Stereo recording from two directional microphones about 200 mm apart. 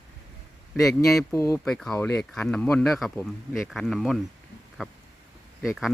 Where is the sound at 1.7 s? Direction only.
Centre (ahead or behind).